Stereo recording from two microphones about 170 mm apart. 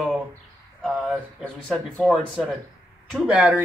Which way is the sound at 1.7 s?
5° left (ahead or behind).